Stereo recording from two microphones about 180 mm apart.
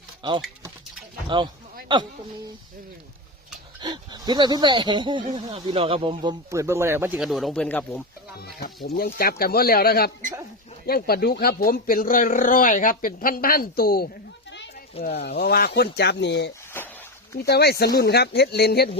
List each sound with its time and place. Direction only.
0.2 s speech: 25° right (ahead or behind)
1.9 s speech: 25° right (ahead or behind)
3.8 s speech: 25° right (ahead or behind)
6.5 s speech: 15° right (ahead or behind)
7.2 s speech: centre (ahead or behind)
8.4 s speech: 60° left (ahead or behind)
15.0 s speech: 65° left (ahead or behind)
16.7 s a sound: 10° left (ahead or behind)
17.4 s speech: 65° left (ahead or behind)